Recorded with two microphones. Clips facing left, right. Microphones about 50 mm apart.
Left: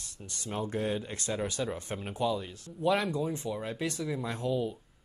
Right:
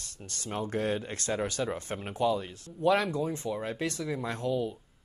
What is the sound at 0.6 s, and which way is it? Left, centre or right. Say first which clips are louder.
Speech: right 2 dB; right.